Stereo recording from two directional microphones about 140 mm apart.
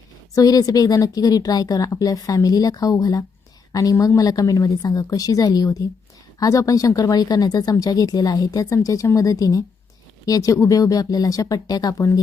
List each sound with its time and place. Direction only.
0.3 s speech: 25° left (ahead or behind)